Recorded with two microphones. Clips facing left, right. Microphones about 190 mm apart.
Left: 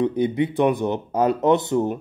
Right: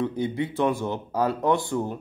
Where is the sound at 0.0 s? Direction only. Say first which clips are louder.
Left 6 dB; 20° left (ahead or behind).